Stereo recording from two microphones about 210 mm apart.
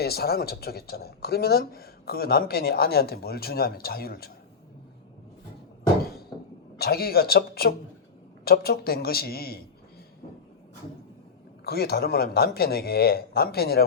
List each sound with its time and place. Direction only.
0.0 s speech: 50° left (ahead or behind)
6.7 s speech: 50° left (ahead or behind)
11.6 s speech: 50° left (ahead or behind)